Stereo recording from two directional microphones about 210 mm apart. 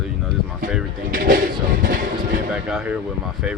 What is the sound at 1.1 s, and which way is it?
Speech, 40° right (ahead or behind).